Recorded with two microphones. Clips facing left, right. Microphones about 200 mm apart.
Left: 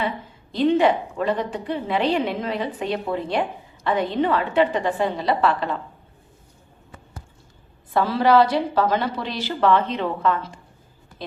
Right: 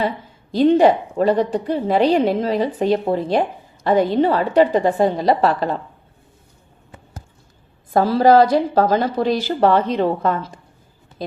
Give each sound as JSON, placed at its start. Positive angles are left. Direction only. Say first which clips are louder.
{"t": 0.5, "sound": "a woman's voice", "louder": "right 5 dB", "side_deg": -40}
{"t": 7.9, "sound": "a woman's voice", "louder": "right 4 dB", "side_deg": -40}